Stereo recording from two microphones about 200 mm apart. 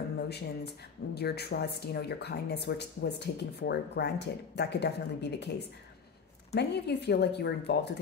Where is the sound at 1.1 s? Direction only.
55° left (ahead or behind).